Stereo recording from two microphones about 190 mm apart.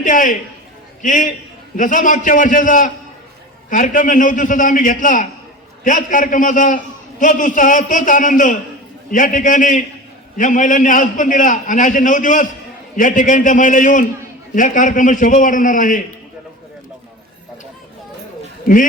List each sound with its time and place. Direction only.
0.0 s a man's voice: 45° left (ahead or behind)